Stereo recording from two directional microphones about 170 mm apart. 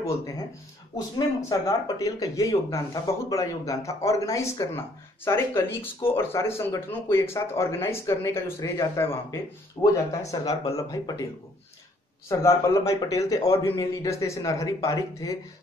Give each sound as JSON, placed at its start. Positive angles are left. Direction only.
{"t": 1.1, "sound": "speech", "side_deg": 20}
{"t": 12.3, "sound": "speech", "side_deg": 20}